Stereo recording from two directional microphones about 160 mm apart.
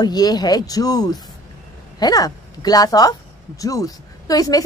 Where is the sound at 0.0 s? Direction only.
25° left (ahead or behind).